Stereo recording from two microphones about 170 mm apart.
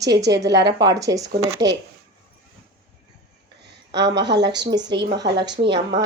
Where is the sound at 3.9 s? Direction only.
90° right.